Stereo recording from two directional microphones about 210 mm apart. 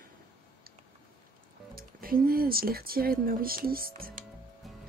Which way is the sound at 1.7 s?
45° right (ahead or behind).